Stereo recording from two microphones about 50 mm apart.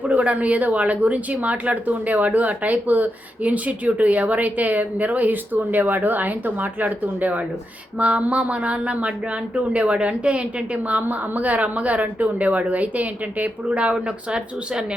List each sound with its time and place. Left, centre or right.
0.0 s speech: right